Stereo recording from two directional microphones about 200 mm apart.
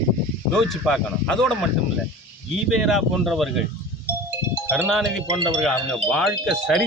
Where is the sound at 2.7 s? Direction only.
Centre (ahead or behind).